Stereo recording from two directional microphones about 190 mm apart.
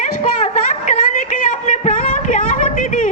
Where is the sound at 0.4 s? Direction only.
40° left (ahead or behind).